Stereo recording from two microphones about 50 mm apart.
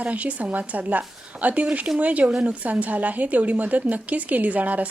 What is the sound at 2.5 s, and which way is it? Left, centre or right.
Speech, right.